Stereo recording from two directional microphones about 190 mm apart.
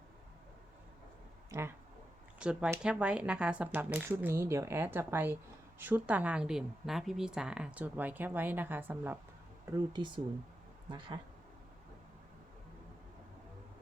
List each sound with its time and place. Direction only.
1.5 s a woman's voice: 15° right (ahead or behind)
9.7 s speech: 25° right (ahead or behind)